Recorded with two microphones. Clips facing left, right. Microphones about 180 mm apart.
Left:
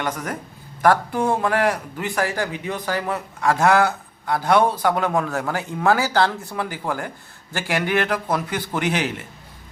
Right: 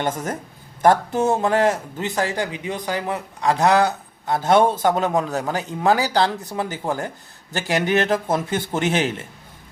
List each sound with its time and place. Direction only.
0.0 s a man's voice: 25° right (ahead or behind)